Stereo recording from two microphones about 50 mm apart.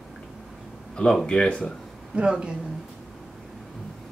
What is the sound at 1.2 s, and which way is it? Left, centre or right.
Speech, centre.